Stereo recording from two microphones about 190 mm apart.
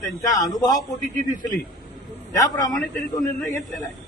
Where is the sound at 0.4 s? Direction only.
20° left (ahead or behind).